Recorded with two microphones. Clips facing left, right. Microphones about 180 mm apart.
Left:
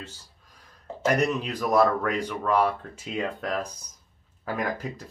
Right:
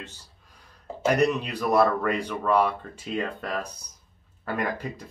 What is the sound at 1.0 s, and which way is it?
Speech, centre (ahead or behind).